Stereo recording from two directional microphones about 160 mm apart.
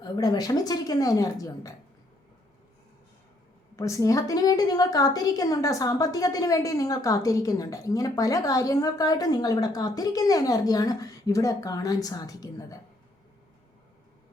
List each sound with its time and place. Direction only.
0.0 s a woman's voice: 25° left (ahead or behind)
3.8 s a woman's voice: 20° left (ahead or behind)